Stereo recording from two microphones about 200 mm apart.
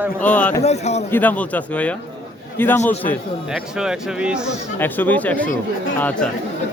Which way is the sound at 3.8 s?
5° right (ahead or behind).